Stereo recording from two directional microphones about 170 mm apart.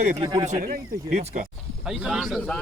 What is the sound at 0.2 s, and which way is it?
Speech, 25° right (ahead or behind).